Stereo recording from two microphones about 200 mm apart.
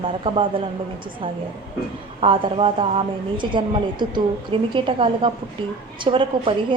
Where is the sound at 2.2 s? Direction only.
25° right (ahead or behind).